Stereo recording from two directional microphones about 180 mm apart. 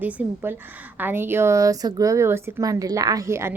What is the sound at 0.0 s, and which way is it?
Speech, 10° right (ahead or behind).